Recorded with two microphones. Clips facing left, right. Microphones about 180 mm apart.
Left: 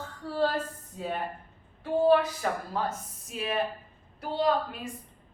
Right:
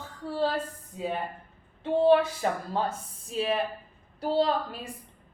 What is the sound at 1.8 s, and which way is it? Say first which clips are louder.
A woman's voice: right 1 dB; 25° right (ahead or behind).